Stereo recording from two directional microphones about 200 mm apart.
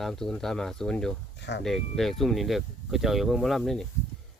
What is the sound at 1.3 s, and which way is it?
Speech, 60° left (ahead or behind).